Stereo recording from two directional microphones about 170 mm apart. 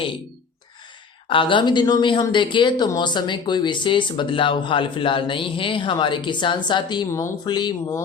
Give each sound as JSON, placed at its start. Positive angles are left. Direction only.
{"t": 1.3, "sound": "speech", "side_deg": 30}